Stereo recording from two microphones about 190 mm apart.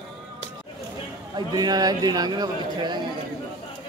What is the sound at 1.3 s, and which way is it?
A man's voice, 20° right (ahead or behind).